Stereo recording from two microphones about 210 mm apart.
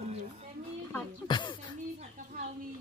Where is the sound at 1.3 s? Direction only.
20° left (ahead or behind).